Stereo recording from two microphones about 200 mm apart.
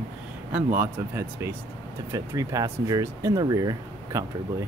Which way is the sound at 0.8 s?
10° right (ahead or behind).